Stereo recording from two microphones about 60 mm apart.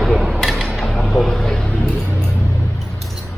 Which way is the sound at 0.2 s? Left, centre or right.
Centre.